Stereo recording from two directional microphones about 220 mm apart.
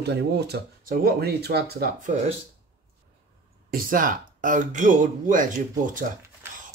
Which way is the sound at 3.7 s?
40° right (ahead or behind).